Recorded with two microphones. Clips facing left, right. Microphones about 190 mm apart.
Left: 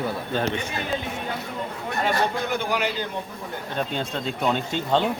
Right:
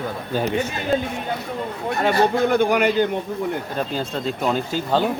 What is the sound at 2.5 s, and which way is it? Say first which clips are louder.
Speech: right 8 dB; 55° right (ahead or behind).